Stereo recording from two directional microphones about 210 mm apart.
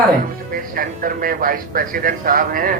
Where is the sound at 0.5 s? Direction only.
40° right (ahead or behind).